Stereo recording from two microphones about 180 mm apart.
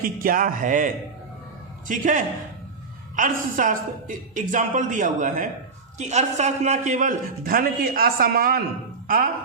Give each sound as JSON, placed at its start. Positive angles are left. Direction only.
{"t": 0.0, "sound": "a man's voice", "side_deg": -50}
{"t": 1.9, "sound": "a man's voice", "side_deg": -45}